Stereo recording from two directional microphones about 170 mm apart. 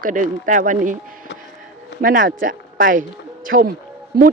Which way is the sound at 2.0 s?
55° right (ahead or behind).